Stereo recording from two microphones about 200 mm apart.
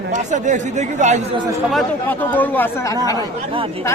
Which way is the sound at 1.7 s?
10° left (ahead or behind).